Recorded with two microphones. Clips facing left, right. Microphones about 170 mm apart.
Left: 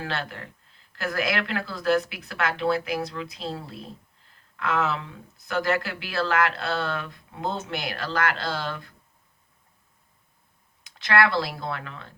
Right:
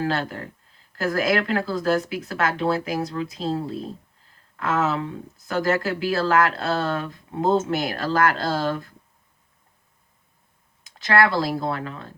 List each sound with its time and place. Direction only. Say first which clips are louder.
0.0 s speech: right 7 dB; 40° right (ahead or behind)
10.8 s speech: right 3 dB; 40° right (ahead or behind)